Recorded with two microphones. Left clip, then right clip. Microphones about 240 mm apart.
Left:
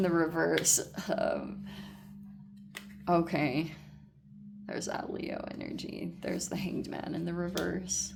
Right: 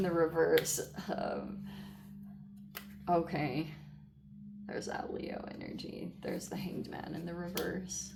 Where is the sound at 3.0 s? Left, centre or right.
Left.